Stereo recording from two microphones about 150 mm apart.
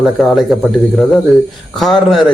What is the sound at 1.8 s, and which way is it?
Speech, centre (ahead or behind).